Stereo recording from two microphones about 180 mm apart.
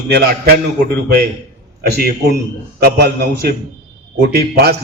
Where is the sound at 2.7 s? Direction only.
60° right (ahead or behind).